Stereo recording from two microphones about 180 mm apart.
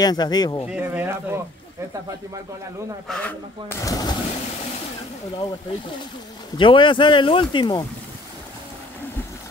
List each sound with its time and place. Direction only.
0.0 s speech: 20° left (ahead or behind)
0.7 s speech: 10° right (ahead or behind)
3.1 s speech: 10° left (ahead or behind)
3.8 s speech: 20° left (ahead or behind)
6.5 s speech: 25° left (ahead or behind)